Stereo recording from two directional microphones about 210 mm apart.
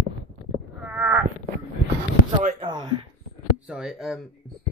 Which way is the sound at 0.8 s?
5° right (ahead or behind).